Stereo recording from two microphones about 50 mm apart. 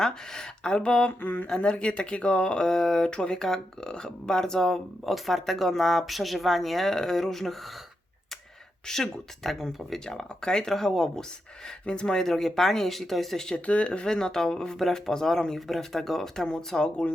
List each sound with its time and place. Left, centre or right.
0.0 s speech: centre
1.2 s a sound: left
1.5 s speech: left; by 7.5 s centre
8.9 s speech: centre
11.9 s speech: left
12.1 s speech: centre
13.7 s speech: left